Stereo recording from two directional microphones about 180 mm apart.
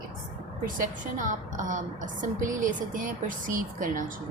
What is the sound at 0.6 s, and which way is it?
A woman's voice, 45° right (ahead or behind).